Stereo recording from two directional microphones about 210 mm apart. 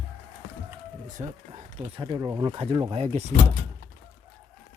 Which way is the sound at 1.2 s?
35° right (ahead or behind).